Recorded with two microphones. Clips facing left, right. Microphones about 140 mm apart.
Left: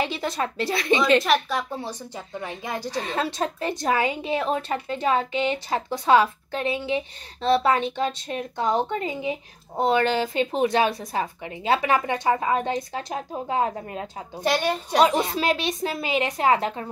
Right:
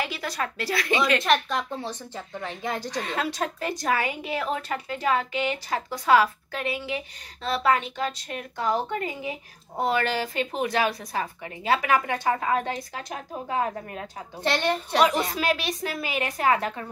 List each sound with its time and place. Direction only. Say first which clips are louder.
0.0 s a woman's voice: left 4 dB; 25° left (ahead or behind)
1.2 s speech: left 1 dB; 5° left (ahead or behind)
2.9 s a woman's voice: left 2 dB; 30° left (ahead or behind)
14.4 s speech: left 2 dB; 10° left (ahead or behind)
15.0 s a woman's voice: left 3 dB; 30° left (ahead or behind)